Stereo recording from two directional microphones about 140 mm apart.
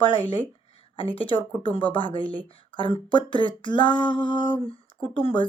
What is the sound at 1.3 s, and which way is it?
Speech, 40° left (ahead or behind).